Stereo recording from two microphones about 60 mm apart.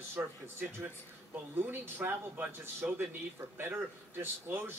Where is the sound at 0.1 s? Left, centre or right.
Right.